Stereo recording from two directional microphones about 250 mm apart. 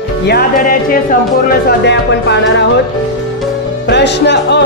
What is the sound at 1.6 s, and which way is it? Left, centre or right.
Speech, left.